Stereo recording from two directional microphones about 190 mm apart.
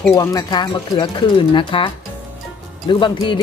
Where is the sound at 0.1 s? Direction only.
20° left (ahead or behind).